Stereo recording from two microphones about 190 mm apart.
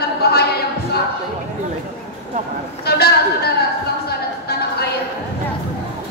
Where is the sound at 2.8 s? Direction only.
55° left (ahead or behind).